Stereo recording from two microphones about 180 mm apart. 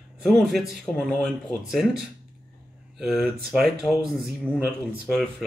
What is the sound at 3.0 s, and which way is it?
Speech, centre (ahead or behind).